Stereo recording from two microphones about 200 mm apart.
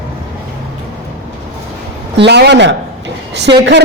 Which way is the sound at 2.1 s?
60° right (ahead or behind).